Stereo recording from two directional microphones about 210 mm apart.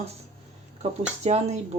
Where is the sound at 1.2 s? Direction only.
30° right (ahead or behind).